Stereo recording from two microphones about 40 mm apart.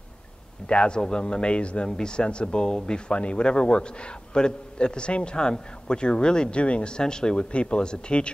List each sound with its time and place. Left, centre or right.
0.7 s speech: left